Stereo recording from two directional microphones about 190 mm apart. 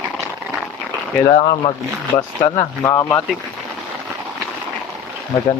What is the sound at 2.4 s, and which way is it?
Speech, 20° left (ahead or behind).